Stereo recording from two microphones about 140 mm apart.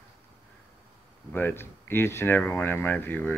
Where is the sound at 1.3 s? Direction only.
15° left (ahead or behind).